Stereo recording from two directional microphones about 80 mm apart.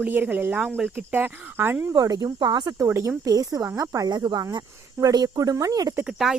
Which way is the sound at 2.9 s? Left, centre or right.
Right.